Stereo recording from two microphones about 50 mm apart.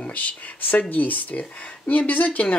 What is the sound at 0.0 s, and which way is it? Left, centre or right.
Speech, left.